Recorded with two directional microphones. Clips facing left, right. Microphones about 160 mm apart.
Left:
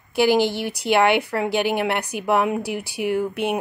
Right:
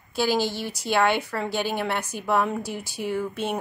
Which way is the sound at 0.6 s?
65° left (ahead or behind).